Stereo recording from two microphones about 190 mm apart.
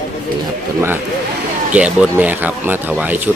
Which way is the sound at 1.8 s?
10° right (ahead or behind).